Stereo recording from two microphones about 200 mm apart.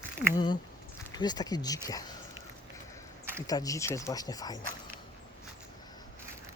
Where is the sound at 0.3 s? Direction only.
20° left (ahead or behind).